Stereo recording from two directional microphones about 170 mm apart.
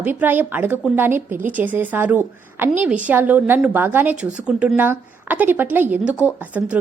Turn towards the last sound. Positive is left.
turn(degrees=-10)  # may be behind; listen again after turning